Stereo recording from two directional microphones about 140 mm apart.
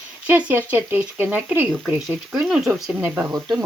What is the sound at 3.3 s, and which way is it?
Speech, 30° right (ahead or behind).